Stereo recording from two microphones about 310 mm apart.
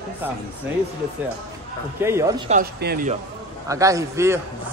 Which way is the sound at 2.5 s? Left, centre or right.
Right.